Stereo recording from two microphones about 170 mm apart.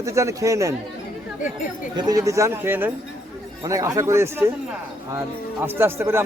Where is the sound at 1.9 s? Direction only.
20° right (ahead or behind).